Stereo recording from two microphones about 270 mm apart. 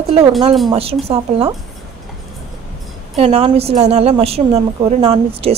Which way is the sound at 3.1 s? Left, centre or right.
Right.